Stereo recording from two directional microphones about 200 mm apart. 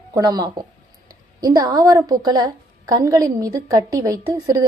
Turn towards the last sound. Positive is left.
turn(degrees=-20)  # may be behind; listen again after turning